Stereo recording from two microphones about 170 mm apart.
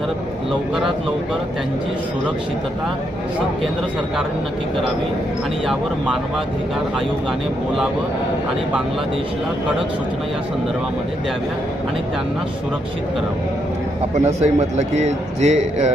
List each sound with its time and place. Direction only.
14.3 s a man's voice: 40° right (ahead or behind)